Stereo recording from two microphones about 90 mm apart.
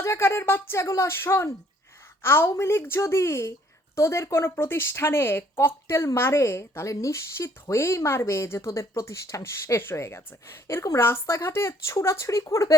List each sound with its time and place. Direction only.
0.0 s a woman's voice: 30° left (ahead or behind)